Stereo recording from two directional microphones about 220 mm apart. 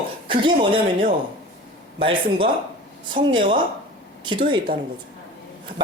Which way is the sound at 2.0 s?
25° right (ahead or behind).